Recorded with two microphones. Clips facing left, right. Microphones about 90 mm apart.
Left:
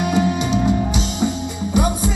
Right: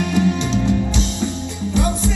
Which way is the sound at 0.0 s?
20° left (ahead or behind).